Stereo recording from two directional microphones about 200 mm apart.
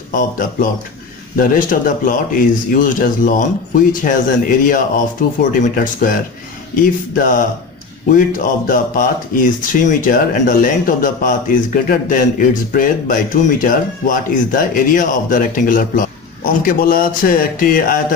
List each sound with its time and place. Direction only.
1.3 s speech: 45° left (ahead or behind)